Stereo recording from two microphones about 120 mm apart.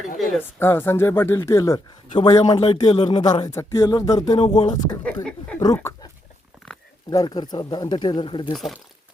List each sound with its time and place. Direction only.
0.2 s speech: centre (ahead or behind)
0.6 s speech: 20° left (ahead or behind)
2.6 s speech: 55° left (ahead or behind)
3.0 s speech: 40° left (ahead or behind)
3.5 s speech: 25° left (ahead or behind)
4.4 s speech: 40° left (ahead or behind)
5.0 s speech: 10° left (ahead or behind)
5.5 s a sound: 25° left (ahead or behind)
7.1 s speech: 35° left (ahead or behind)
8.5 s speech: centre (ahead or behind)